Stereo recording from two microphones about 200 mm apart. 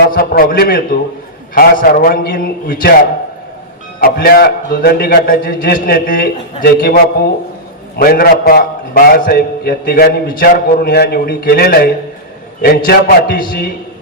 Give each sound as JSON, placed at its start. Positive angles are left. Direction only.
{"t": 0.1, "sound": "a man's voice", "side_deg": 45}
{"t": 4.0, "sound": "a man's voice", "side_deg": 50}